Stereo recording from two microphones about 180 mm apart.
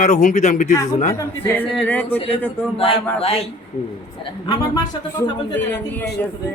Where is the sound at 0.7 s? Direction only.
20° left (ahead or behind).